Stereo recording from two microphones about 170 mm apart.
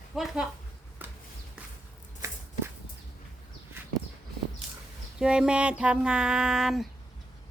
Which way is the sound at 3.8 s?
15° right (ahead or behind).